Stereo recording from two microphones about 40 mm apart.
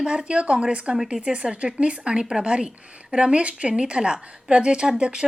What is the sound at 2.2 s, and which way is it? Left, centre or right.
A woman's voice, centre.